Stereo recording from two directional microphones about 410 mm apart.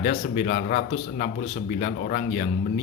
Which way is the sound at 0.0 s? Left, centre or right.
Centre.